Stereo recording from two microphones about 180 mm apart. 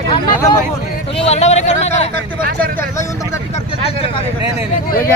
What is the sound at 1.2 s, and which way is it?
Speech, 40° left (ahead or behind).